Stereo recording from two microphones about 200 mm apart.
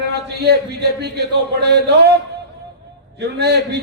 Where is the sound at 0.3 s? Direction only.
55° right (ahead or behind).